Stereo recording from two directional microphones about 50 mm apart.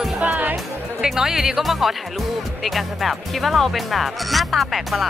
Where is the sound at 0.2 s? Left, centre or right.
Right.